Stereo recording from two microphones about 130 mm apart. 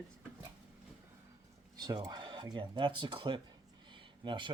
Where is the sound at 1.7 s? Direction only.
30° right (ahead or behind).